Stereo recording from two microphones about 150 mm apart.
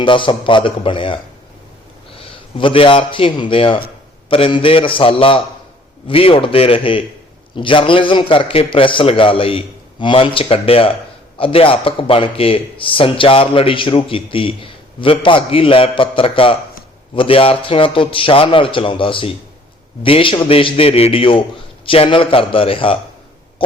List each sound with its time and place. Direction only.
0.0 s a man's voice: 35° left (ahead or behind)